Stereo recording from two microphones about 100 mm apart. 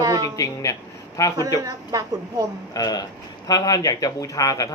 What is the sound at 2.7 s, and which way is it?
Speech, 40° left (ahead or behind).